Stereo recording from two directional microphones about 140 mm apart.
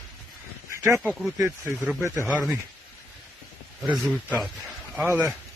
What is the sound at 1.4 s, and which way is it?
Speech, 15° right (ahead or behind).